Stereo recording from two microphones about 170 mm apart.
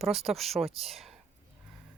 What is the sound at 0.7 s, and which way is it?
Speech, 35° right (ahead or behind).